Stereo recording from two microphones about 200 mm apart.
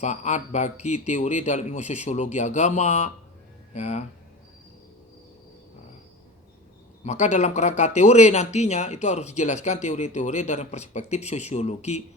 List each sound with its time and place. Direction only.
0.0 s speech: 35° left (ahead or behind)
7.0 s speech: 35° left (ahead or behind)